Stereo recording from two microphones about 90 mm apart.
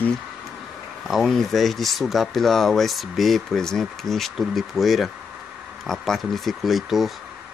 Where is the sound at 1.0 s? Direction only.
Centre (ahead or behind).